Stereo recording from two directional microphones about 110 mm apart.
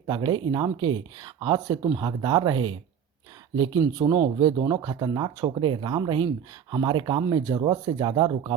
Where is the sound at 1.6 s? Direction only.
30° right (ahead or behind).